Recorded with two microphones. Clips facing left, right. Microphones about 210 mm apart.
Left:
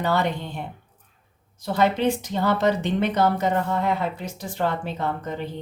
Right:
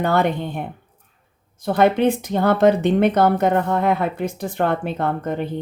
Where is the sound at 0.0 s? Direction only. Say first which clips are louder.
Right 5 dB; 55° right (ahead or behind).